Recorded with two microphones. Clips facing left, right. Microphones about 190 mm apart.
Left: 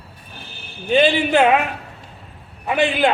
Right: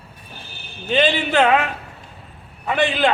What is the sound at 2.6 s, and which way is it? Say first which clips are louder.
Speech: left 1 dB; 10° left (ahead or behind).